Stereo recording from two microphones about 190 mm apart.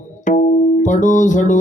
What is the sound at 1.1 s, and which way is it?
Music, 40° left (ahead or behind).